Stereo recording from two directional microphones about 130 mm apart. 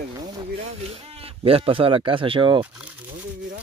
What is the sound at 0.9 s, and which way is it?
Speech, 50° right (ahead or behind).